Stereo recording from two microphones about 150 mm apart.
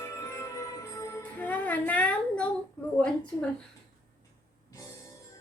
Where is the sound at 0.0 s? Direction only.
20° left (ahead or behind).